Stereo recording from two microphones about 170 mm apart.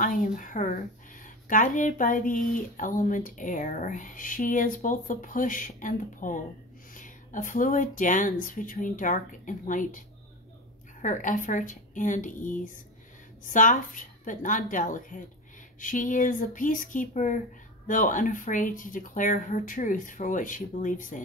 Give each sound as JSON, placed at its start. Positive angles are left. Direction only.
{"t": 0.0, "sound": "a woman's voice", "side_deg": 50}